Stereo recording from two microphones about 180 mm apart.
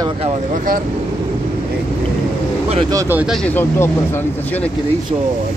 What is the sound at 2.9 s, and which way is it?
Speech, 15° right (ahead or behind).